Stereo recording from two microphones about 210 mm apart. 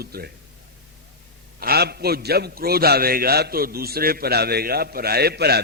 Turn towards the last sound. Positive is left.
turn(degrees=-50)  # may be behind; listen again after turning